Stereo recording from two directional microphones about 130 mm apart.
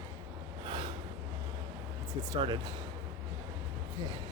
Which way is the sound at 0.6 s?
40° right (ahead or behind).